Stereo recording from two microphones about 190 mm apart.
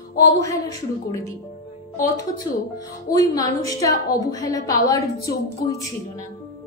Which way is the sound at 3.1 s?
20° left (ahead or behind).